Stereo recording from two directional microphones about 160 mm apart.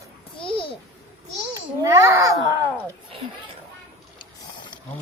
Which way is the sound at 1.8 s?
20° right (ahead or behind).